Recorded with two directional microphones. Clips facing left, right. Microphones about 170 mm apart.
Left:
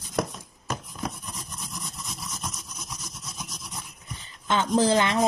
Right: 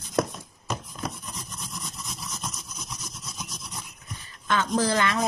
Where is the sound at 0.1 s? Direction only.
Centre (ahead or behind).